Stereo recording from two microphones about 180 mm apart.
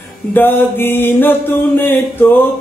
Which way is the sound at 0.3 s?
10° left (ahead or behind).